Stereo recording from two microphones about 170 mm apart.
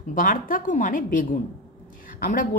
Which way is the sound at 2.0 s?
55° left (ahead or behind).